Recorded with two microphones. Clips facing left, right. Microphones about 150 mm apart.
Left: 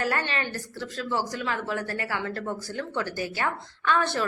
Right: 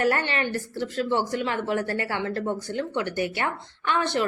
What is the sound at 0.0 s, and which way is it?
A woman's voice, 25° right (ahead or behind).